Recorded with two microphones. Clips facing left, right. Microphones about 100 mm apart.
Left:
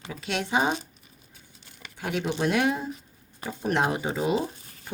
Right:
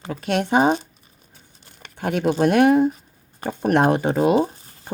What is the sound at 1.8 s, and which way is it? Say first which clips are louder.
Speech: right 8 dB; 50° right (ahead or behind).